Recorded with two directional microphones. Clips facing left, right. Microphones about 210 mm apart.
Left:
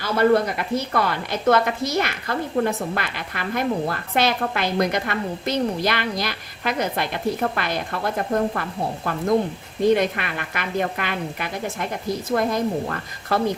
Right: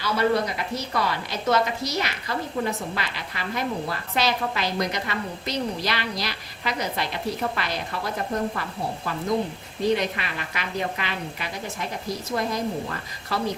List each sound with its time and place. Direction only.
0.0 s a woman's voice: 55° left (ahead or behind)